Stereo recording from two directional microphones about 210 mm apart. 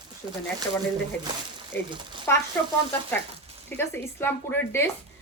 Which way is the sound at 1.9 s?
20° right (ahead or behind).